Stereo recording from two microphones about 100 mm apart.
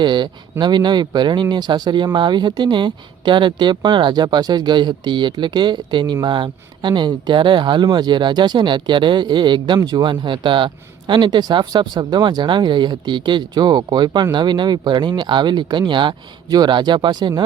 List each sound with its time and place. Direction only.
0.0 s speech: 50° right (ahead or behind)